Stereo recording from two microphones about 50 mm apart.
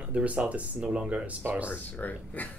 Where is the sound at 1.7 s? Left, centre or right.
Left.